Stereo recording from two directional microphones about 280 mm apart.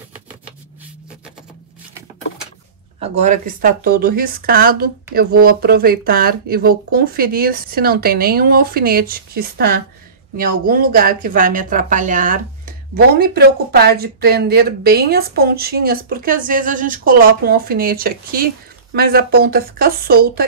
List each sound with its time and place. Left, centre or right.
3.0 s speech: right